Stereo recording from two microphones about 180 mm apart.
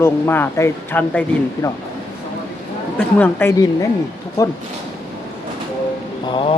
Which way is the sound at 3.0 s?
10° left (ahead or behind).